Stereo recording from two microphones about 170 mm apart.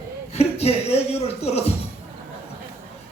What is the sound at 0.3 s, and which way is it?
Speech, 40° left (ahead or behind).